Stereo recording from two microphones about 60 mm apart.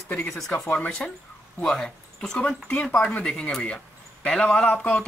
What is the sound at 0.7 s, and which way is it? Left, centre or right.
Speech, centre.